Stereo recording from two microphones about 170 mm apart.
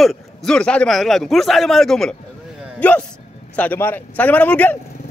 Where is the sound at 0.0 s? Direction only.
Centre (ahead or behind).